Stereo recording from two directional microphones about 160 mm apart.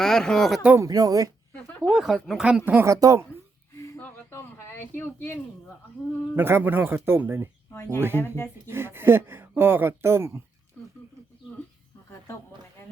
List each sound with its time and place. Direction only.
0.0 s speech: 5° left (ahead or behind)
0.8 s speech: 25° right (ahead or behind)
1.5 s a sound: 10° left (ahead or behind)
1.9 s speech: 5° right (ahead or behind); by 3.2 s 20° right (ahead or behind)
3.8 s a sound: 15° left (ahead or behind)
6.3 s speech: 15° right (ahead or behind)
7.7 s speech: 15° left (ahead or behind)
8.6 s speech: 15° right (ahead or behind)